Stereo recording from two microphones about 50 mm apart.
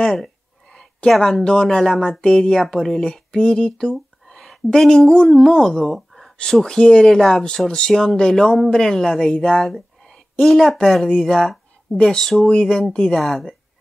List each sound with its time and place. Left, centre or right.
0.0 s a sound: centre
1.3 s speech: centre
3.9 s a sound: centre
4.6 s speech: centre
5.9 s a sound: centre
6.5 s speech: centre
9.3 s speech: left
10.4 s a woman's voice: centre
11.1 s speech: left
11.3 s a woman's voice: centre